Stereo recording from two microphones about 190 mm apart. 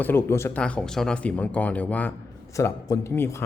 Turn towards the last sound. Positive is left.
turn(degrees=15)  # may be behind; listen again after turning